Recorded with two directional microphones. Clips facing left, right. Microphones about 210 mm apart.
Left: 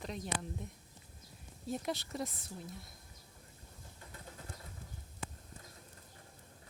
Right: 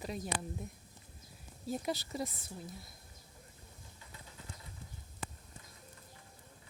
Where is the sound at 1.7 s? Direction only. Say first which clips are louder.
Right 1 dB; centre (ahead or behind).